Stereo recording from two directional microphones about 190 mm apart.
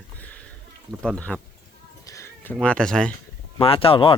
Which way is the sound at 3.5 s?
30° left (ahead or behind).